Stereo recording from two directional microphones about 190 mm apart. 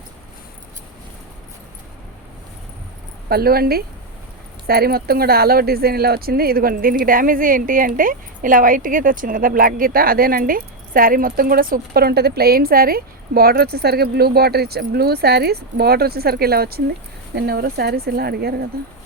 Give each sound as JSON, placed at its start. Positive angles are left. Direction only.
{"t": 3.2, "sound": "a woman's voice", "side_deg": -55}